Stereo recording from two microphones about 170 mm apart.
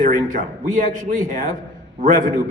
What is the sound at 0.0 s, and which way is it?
A man's voice, 50° right (ahead or behind).